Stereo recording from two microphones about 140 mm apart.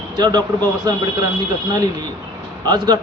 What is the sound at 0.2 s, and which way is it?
Speech, 30° right (ahead or behind).